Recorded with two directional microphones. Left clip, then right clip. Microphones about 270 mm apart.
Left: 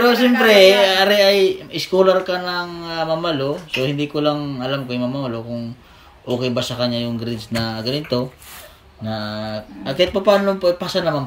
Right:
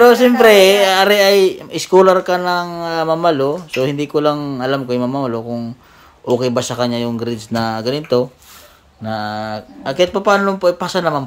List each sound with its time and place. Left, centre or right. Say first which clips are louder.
0.0 s speech: right 6 dB; centre
6.4 s speech: right 4 dB; centre
9.2 s a sound: right 6 dB; right
9.5 s speech: right 3 dB; centre